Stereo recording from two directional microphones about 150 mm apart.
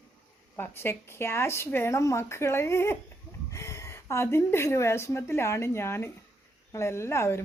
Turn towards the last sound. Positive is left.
turn(degrees=20)  # may be behind; listen again after turning